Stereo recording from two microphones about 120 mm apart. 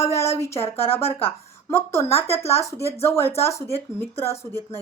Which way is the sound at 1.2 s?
20° left (ahead or behind).